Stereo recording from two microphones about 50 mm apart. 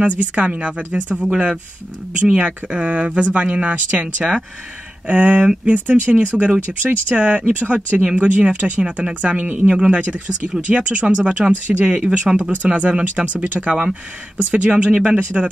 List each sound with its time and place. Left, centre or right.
0.2 s speech: right
2.1 s speech: right